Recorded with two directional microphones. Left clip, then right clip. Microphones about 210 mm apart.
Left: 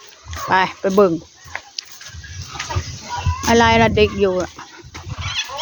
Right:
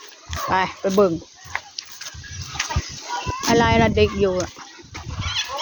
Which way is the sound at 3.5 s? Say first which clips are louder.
Left 4 dB; 20° left (ahead or behind).